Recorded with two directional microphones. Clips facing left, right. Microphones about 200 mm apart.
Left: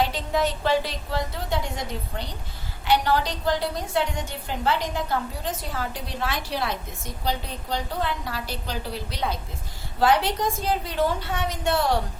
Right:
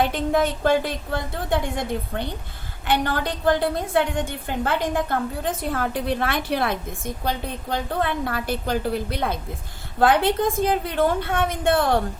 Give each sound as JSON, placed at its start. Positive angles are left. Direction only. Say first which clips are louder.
{"t": 0.0, "sound": "a woman's voice", "louder": "right 3 dB", "side_deg": -55}